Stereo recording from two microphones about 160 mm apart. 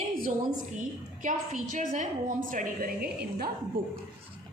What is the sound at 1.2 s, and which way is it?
A woman's voice, 50° right (ahead or behind).